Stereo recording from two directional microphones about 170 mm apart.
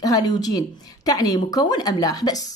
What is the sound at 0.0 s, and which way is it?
Speech, 20° left (ahead or behind).